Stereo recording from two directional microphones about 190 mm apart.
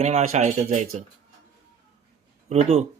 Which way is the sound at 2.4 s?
35° right (ahead or behind).